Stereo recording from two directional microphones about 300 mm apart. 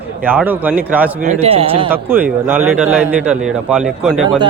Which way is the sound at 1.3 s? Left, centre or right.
Centre.